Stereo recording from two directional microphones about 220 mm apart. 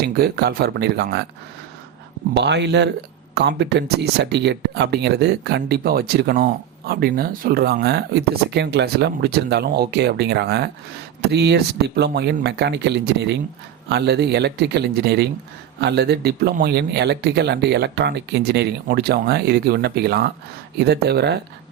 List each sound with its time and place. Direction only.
0.0 s speech: 45° right (ahead or behind)
2.3 s speech: 50° right (ahead or behind)